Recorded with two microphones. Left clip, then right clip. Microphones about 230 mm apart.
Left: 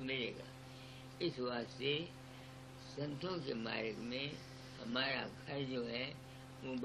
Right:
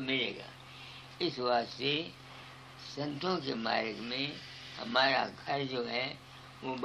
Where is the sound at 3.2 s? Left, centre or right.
Right.